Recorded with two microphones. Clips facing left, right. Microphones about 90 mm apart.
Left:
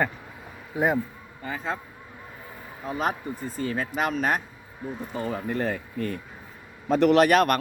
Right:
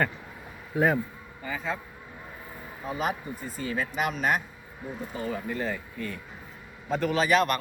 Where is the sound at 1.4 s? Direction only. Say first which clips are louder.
Left 1 dB; 45° left (ahead or behind).